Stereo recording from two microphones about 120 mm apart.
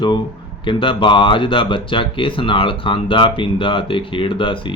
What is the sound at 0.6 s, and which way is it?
Speech, 45° left (ahead or behind).